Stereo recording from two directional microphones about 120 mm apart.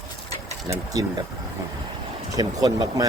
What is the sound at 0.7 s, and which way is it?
Speech, 30° right (ahead or behind).